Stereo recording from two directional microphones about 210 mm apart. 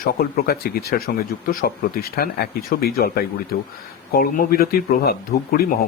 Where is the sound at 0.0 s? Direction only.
45° left (ahead or behind).